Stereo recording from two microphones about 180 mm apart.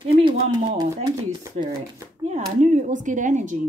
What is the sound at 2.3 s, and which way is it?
Speech, 40° right (ahead or behind).